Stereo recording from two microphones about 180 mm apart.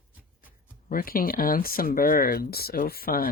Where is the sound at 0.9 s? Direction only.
55° left (ahead or behind).